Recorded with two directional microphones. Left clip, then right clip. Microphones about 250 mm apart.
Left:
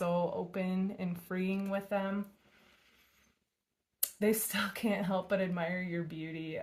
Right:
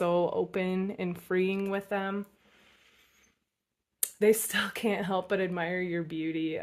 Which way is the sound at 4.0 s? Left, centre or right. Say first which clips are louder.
Right 7 dB; right.